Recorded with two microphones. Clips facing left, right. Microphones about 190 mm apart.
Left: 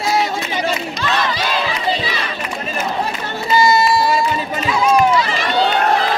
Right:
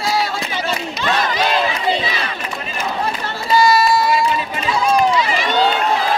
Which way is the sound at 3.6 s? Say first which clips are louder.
Even; 25° left (ahead or behind).